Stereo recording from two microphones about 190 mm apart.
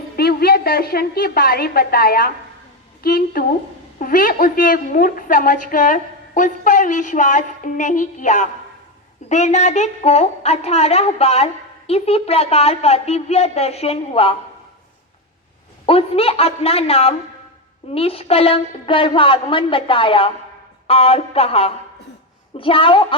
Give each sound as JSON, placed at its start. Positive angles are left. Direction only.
{"t": 0.2, "sound": "a woman's voice", "side_deg": 55}
{"t": 15.9, "sound": "a woman's voice", "side_deg": 30}